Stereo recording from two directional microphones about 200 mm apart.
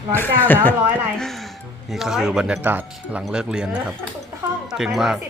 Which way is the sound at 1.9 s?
Centre (ahead or behind).